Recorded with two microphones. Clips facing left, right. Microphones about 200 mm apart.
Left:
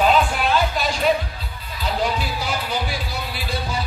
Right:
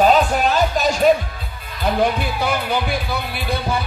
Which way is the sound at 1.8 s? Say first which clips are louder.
Right 5 dB; 55° right (ahead or behind).